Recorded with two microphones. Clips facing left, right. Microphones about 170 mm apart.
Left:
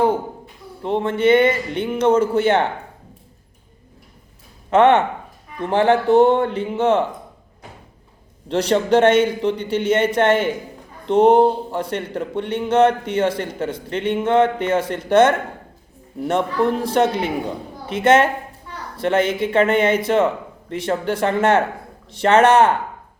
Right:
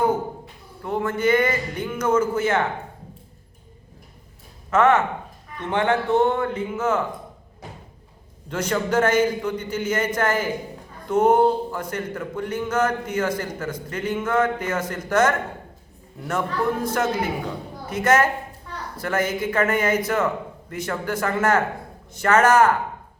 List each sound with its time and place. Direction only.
0.8 s speech: 25° left (ahead or behind)
4.7 s a man's voice: 30° left (ahead or behind)
8.4 s a man's voice: 30° left (ahead or behind)